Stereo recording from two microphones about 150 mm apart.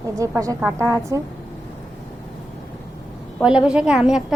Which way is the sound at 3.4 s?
5° right (ahead or behind).